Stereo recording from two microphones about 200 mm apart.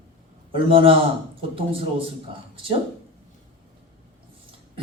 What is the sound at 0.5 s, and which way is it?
Speech, 25° right (ahead or behind).